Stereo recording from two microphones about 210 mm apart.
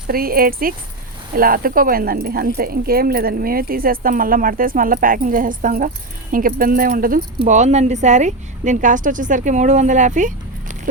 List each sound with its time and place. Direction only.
0.1 s speech: 45° right (ahead or behind)